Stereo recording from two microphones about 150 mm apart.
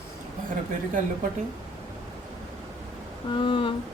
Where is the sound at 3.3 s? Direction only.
35° left (ahead or behind).